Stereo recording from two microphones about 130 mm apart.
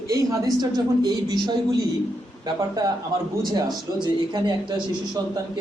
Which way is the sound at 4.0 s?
35° right (ahead or behind).